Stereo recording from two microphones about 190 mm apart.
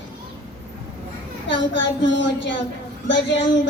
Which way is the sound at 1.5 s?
75° left (ahead or behind).